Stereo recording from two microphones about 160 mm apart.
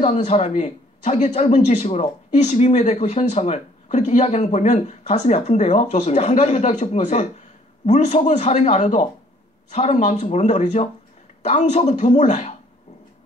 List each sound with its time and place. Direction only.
0.0 s speech: 45° left (ahead or behind)